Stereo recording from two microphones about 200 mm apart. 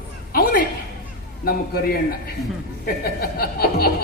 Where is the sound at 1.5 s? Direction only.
50° left (ahead or behind).